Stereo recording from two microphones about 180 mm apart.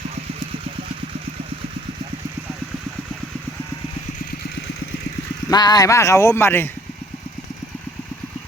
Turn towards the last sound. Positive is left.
turn(degrees=10)  # may be behind; listen again after turning